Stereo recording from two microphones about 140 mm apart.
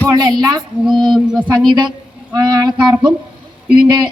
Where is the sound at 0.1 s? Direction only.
30° right (ahead or behind).